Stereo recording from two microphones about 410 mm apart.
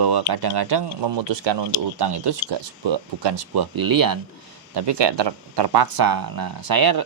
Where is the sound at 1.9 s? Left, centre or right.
Right.